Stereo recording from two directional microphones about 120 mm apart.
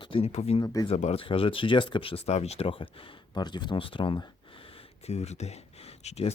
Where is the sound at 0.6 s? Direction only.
30° left (ahead or behind).